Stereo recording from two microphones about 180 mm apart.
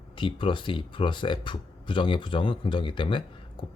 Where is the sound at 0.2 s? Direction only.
30° left (ahead or behind).